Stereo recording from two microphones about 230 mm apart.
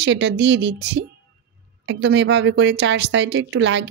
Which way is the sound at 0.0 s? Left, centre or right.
Right.